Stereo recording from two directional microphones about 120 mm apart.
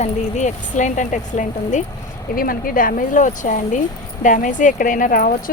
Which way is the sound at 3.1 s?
90° left.